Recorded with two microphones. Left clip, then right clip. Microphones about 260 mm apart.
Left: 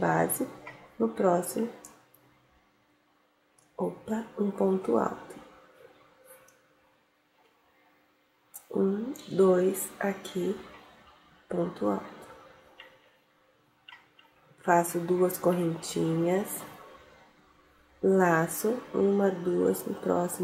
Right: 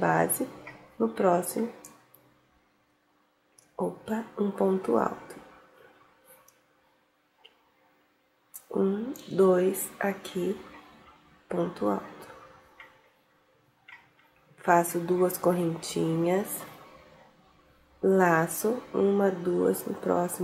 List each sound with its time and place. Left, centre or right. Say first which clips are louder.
0.0 s a sound: right 2 dB; centre
1.1 s speech: right 1 dB; centre
3.7 s speech: right 1 dB; left
8.6 s speech: right 1 dB; centre
9.9 s a sound: right 1 dB; centre
14.6 s speech: right 1 dB; centre
18.0 s speech: right 1 dB; centre